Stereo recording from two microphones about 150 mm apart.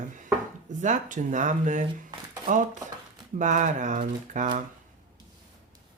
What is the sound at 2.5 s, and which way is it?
Speech, 70° right (ahead or behind).